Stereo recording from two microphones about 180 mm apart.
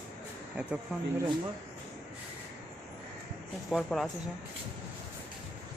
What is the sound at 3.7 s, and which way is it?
Speech, centre (ahead or behind).